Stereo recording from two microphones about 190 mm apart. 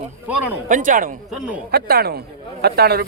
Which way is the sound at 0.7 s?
45° right (ahead or behind).